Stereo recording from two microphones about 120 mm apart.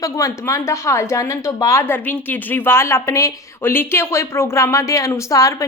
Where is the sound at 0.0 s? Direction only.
25° left (ahead or behind).